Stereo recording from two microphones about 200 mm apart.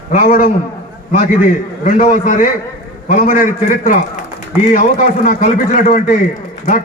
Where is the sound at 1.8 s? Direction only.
40° left (ahead or behind).